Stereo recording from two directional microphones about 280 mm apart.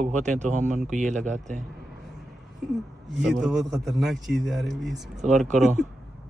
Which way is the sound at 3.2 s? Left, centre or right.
Centre.